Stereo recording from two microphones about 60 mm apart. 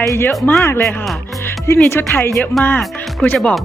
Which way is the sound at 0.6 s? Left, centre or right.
Left.